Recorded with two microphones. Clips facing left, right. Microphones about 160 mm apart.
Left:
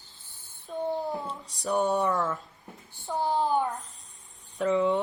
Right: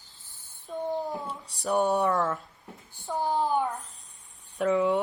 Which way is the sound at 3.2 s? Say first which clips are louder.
Left 1 dB; 20° left (ahead or behind).